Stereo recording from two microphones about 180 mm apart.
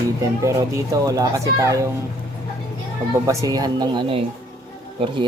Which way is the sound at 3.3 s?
20° right (ahead or behind).